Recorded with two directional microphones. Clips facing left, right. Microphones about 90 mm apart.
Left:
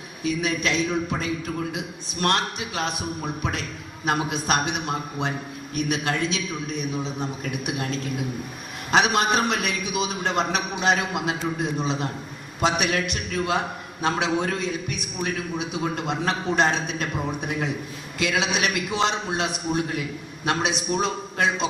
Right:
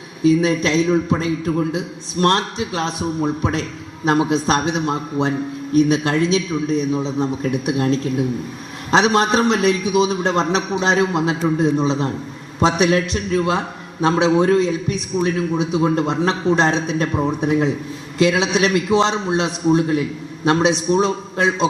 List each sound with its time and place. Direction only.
0.2 s a man's voice: 30° right (ahead or behind)